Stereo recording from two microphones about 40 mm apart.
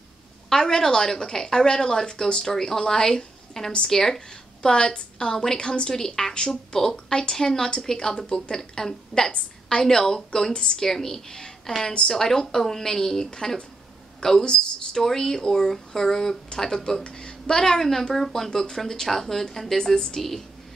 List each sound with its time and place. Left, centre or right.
0.5 s speech: centre
4.6 s speech: left
10.9 s speech: centre
15.0 s speech: centre